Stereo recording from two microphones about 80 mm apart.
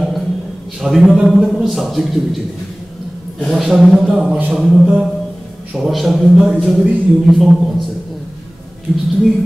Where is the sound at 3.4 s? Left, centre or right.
Centre.